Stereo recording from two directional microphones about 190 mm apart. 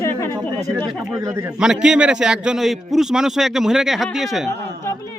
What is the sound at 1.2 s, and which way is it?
Speech, 15° right (ahead or behind).